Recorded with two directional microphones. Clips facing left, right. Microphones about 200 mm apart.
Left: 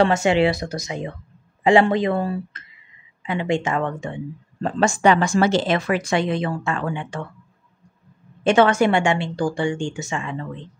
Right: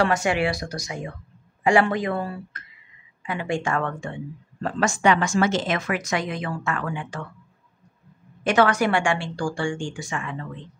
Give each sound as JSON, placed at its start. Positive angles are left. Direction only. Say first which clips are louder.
{"t": 0.0, "sound": "speech", "louder": "left 5 dB", "side_deg": 25}
{"t": 8.5, "sound": "speech", "louder": "left 4 dB", "side_deg": 25}